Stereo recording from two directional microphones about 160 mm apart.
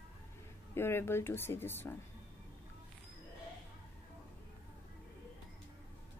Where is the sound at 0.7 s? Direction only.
15° left (ahead or behind).